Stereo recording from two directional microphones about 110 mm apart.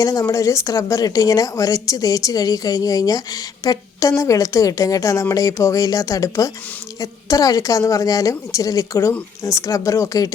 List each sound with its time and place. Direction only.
0.0 s a woman's voice: 30° left (ahead or behind)